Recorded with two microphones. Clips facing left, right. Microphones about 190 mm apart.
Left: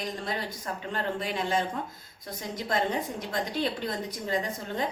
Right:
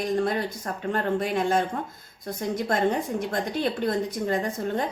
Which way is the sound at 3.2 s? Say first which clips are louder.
Right 3 dB; 50° right (ahead or behind).